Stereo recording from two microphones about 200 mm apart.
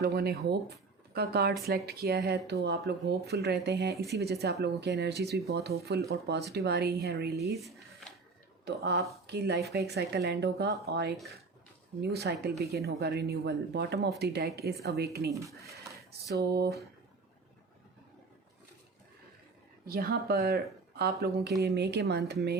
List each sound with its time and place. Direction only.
0.0 s speech: 55° right (ahead or behind)
8.6 s speech: 60° right (ahead or behind)
15.3 s speech: 15° right (ahead or behind)
19.9 s speech: 50° right (ahead or behind)